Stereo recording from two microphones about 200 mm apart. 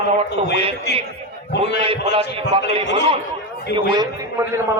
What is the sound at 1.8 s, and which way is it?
Speech, 30° right (ahead or behind).